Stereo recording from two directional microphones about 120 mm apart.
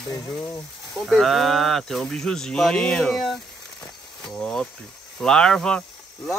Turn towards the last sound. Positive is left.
turn(degrees=5)  # may be behind; listen again after turning